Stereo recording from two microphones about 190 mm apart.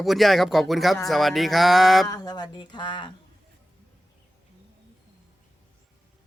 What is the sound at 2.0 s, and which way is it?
Speech, 20° left (ahead or behind).